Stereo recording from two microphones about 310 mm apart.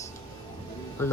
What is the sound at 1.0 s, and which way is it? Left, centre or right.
Speech, centre.